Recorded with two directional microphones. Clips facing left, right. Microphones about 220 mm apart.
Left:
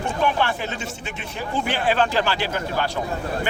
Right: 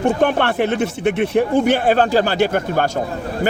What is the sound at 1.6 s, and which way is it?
Speech, 45° right (ahead or behind).